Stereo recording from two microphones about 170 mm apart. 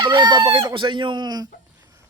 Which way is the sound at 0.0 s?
25° right (ahead or behind).